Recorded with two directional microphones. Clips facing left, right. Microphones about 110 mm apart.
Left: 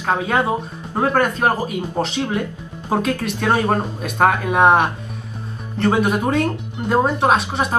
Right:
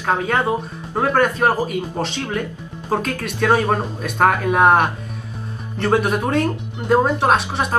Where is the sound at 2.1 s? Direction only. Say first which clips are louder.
Left 2 dB; 15° left (ahead or behind).